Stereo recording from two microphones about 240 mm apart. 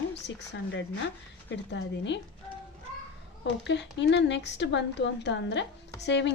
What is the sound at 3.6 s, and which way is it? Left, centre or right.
A woman's voice, left.